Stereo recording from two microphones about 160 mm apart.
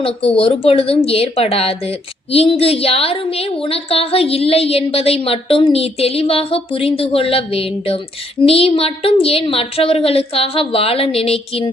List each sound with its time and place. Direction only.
0.0 s a woman's voice: 35° left (ahead or behind)